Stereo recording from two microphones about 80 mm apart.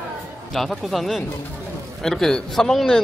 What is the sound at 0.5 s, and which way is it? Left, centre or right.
A man's voice, centre.